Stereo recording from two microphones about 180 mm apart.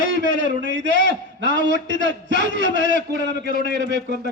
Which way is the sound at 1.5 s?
80° right.